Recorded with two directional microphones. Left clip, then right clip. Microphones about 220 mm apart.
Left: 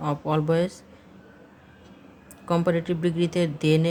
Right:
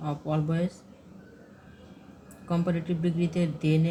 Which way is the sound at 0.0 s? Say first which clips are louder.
Left 6 dB; 50° left (ahead or behind).